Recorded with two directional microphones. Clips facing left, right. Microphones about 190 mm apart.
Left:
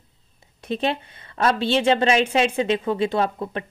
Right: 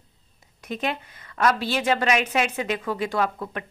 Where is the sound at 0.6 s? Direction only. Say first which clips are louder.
Left 4 dB; 30° left (ahead or behind).